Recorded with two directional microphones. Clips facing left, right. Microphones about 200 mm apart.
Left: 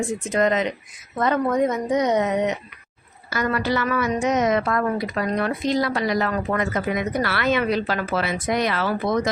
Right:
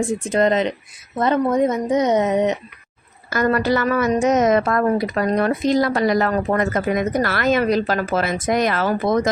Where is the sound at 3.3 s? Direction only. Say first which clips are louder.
Right 5 dB; 45° right (ahead or behind).